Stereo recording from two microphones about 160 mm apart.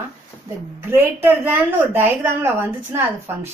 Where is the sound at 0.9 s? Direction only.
10° right (ahead or behind).